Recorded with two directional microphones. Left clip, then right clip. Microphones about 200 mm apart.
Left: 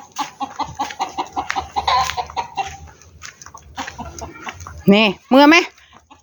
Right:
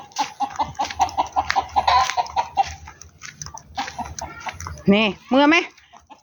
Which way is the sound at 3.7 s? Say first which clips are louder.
Right 1 dB; 5° left (ahead or behind).